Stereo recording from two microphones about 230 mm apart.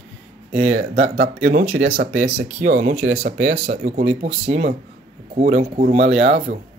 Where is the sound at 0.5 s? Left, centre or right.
Right.